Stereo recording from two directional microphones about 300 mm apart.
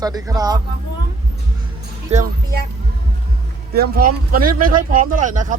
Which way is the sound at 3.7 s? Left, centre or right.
Right.